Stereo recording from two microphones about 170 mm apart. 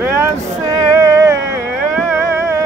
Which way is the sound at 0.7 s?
20° right (ahead or behind).